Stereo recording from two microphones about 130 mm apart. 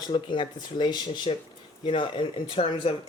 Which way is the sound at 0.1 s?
35° left (ahead or behind).